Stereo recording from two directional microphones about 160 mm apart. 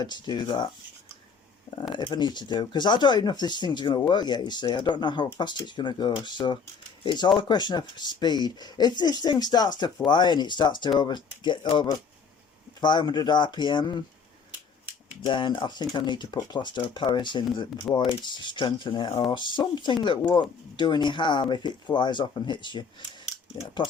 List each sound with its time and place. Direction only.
0.0 s speech: 25° left (ahead or behind)
1.9 s speech: 30° left (ahead or behind)
15.3 s speech: 30° left (ahead or behind)
17.9 s speech: 5° left (ahead or behind)
18.2 s speech: 30° left (ahead or behind)